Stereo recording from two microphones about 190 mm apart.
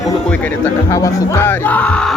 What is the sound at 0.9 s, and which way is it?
Speech, 15° left (ahead or behind).